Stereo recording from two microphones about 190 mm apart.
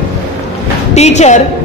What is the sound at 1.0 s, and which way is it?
Speech, 35° left (ahead or behind).